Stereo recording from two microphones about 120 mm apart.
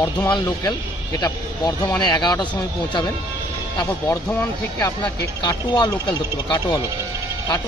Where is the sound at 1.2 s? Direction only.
35° left (ahead or behind).